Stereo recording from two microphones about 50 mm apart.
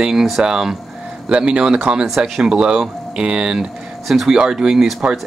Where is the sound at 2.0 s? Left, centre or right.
Centre.